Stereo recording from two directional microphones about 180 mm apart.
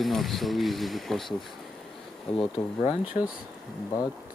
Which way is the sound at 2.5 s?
30° left (ahead or behind).